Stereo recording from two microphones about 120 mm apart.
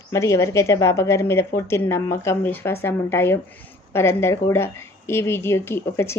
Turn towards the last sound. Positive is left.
turn(degrees=20)  # may be behind; listen again after turning